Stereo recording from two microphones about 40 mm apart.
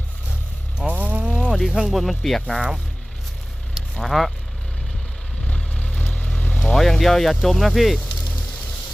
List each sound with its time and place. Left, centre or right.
0.9 s a sound: right
1.2 s a sound: right
1.5 s speech: centre
4.0 s speech: centre
5.5 s vehicle: left
6.5 s speech: centre